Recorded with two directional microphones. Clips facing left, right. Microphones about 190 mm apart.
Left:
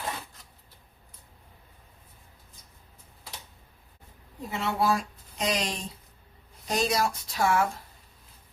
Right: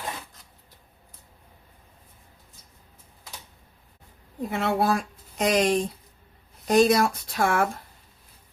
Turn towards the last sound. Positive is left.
turn(degrees=-55)  # may be behind; listen again after turning